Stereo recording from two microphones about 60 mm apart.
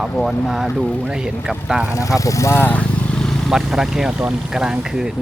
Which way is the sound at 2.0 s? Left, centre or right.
Left.